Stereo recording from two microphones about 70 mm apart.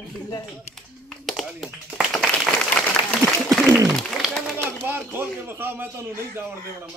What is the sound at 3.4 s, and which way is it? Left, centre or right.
Pigeon, centre.